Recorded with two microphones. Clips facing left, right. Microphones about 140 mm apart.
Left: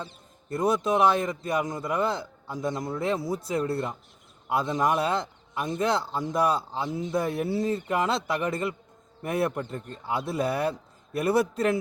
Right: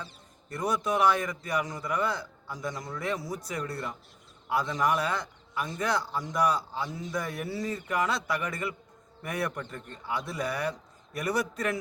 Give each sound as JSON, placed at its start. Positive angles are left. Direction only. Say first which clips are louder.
{"t": 0.5, "sound": "a man's voice", "louder": "left 5 dB", "side_deg": 25}